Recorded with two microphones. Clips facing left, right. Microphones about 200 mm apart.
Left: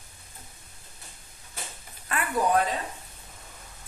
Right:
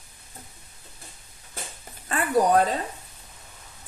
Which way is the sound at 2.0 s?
35° right (ahead or behind).